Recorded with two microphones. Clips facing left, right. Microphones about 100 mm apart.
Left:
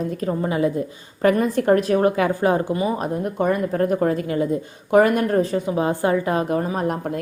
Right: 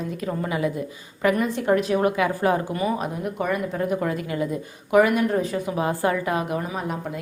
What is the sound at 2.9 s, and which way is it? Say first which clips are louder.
A woman's voice: left 4 dB; 40° left (ahead or behind).